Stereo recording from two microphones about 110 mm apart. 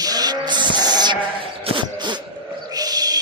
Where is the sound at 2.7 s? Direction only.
35° right (ahead or behind).